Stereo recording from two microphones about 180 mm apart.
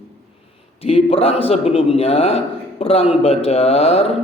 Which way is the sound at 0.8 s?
35° left (ahead or behind).